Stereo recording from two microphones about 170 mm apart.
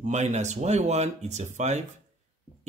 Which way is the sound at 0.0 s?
45° right (ahead or behind).